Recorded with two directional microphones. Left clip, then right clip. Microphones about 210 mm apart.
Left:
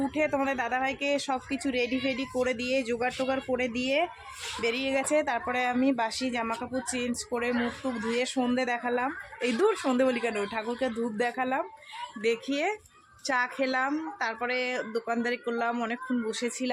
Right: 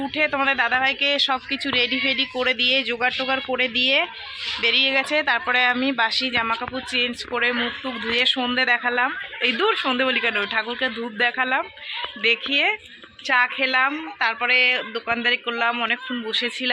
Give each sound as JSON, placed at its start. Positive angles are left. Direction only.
{"t": 0.0, "sound": "a woman's voice", "side_deg": 0}
{"t": 3.6, "sound": "a man's voice", "side_deg": 15}
{"t": 7.5, "sound": "a woman's voice", "side_deg": 0}
{"t": 8.1, "sound": "a man's voice", "side_deg": 15}